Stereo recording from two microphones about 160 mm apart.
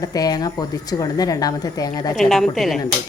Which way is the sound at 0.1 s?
25° left (ahead or behind).